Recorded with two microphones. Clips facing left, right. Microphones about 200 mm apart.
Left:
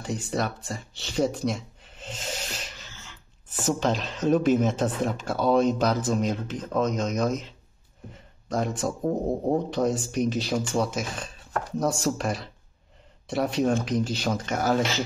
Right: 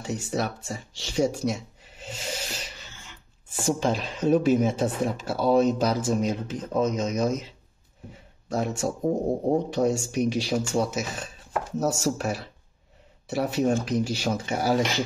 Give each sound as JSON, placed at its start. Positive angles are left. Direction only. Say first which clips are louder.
{"t": 0.0, "sound": "speech", "louder": "even", "side_deg": -10}
{"t": 3.8, "sound": "speech", "louder": "even", "side_deg": -10}